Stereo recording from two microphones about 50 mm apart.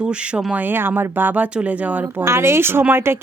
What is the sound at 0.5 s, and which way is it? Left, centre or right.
Speech, right.